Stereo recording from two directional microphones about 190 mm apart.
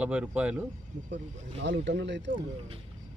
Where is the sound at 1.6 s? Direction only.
70° right (ahead or behind).